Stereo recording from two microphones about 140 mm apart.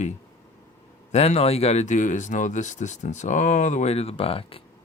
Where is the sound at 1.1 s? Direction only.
50° left (ahead or behind).